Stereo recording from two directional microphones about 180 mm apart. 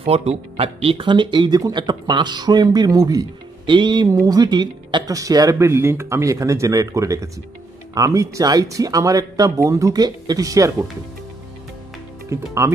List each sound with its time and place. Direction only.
0.0 s speech: 35° right (ahead or behind); by 10.9 s 20° right (ahead or behind)
12.3 s speech: 15° right (ahead or behind)